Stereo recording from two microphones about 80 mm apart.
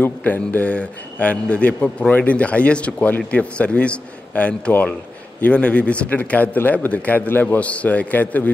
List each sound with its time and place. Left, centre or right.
0.0 s a man's voice: left